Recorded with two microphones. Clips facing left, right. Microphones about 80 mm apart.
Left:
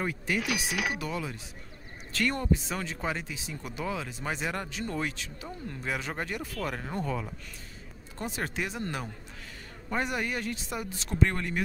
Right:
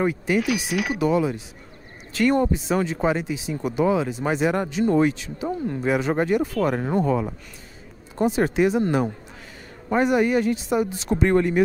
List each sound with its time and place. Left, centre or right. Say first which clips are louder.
0.0 s speech: right 9 dB; centre
0.4 s speech: right 7 dB; centre
0.9 s speech: right 13 dB; centre